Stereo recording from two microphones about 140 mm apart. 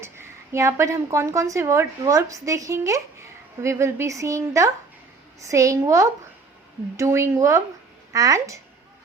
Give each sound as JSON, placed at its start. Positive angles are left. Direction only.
{"t": 0.0, "sound": "a woman's voice", "side_deg": -20}